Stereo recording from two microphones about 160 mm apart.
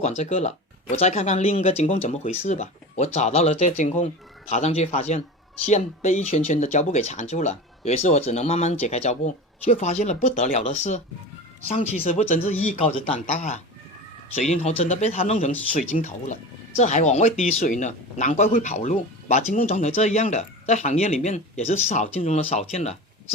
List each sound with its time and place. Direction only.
0.0 s speech: 40° left (ahead or behind)